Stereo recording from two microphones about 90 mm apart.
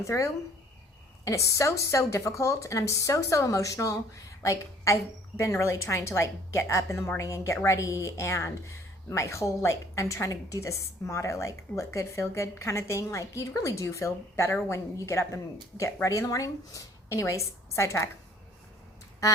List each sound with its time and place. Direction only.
0.0 s a woman's voice: 35° left (ahead or behind)
19.2 s speech: 35° left (ahead or behind)